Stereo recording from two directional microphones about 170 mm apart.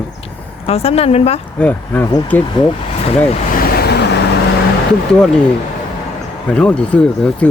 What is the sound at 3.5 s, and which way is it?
Vehicle, 65° left (ahead or behind).